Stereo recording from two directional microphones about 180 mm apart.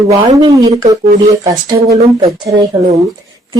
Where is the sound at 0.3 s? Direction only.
25° right (ahead or behind).